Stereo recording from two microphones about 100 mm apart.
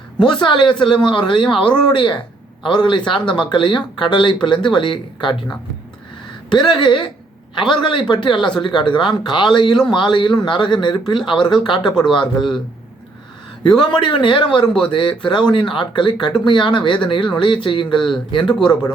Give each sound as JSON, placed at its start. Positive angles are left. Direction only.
{"t": 0.2, "sound": "speech", "side_deg": 50}
{"t": 13.7, "sound": "speech", "side_deg": 50}